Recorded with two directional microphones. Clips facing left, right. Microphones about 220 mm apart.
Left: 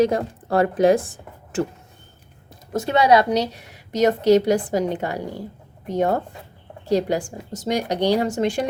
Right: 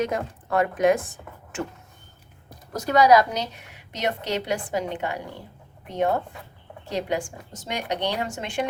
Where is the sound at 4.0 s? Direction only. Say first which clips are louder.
Left 12 dB; 40° left (ahead or behind).